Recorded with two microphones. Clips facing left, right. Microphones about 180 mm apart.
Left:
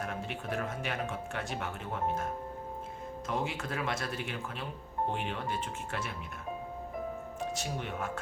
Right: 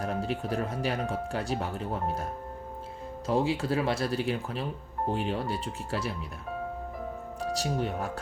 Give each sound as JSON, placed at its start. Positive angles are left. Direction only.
{"t": 0.0, "sound": "speech", "side_deg": -35}
{"t": 3.2, "sound": "speech", "side_deg": -30}
{"t": 7.4, "sound": "speech", "side_deg": -35}